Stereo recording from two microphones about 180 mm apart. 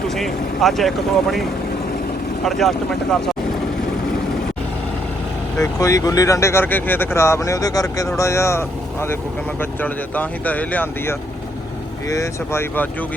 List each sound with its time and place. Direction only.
0.1 s speech: centre (ahead or behind)
5.5 s speech: 15° left (ahead or behind)